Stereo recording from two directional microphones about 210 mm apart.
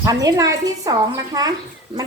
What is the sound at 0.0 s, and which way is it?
A woman's voice, 15° right (ahead or behind).